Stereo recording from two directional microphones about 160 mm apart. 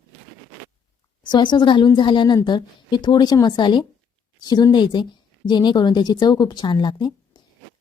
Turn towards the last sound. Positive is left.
turn(degrees=30)  # may be behind; listen again after turning